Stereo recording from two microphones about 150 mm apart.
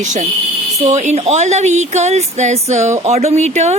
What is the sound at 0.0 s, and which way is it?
Speech, 55° right (ahead or behind).